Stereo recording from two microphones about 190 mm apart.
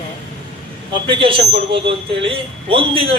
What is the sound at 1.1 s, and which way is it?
A man's voice, 25° right (ahead or behind).